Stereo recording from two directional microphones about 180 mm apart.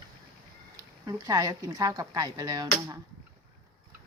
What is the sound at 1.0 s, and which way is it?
Speech, 20° right (ahead or behind).